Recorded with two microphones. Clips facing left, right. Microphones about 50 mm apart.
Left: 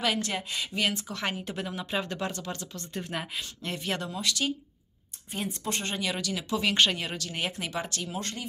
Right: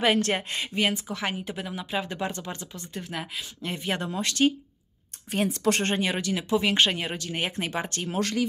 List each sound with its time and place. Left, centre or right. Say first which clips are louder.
0.2 s a woman's voice: right 5 dB; right
0.9 s speech: right 2 dB; centre
2.0 s speech: right 2 dB; centre
2.9 s speech: even; centre
3.7 s speech: right 3 dB; right
4.1 s a woman's voice: right 6 dB; right
5.3 s speech: right 8 dB; right
5.9 s a woman's voice: right 4 dB; right